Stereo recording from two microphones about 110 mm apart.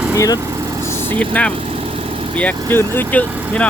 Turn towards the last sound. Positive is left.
turn(degrees=10)  # may be behind; listen again after turning